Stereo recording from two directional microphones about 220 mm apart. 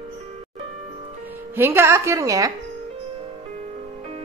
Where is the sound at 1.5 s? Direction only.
10° right (ahead or behind).